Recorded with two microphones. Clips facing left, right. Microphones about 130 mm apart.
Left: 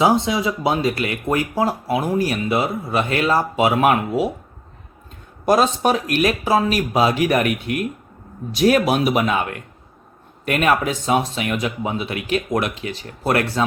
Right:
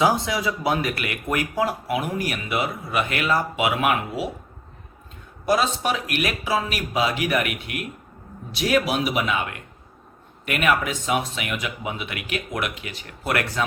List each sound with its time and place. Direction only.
0.0 s speech: 25° left (ahead or behind); by 4.3 s 40° left (ahead or behind)
5.5 s speech: 40° left (ahead or behind)